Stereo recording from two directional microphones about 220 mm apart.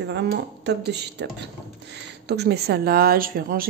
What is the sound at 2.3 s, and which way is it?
A woman's voice, 50° right (ahead or behind).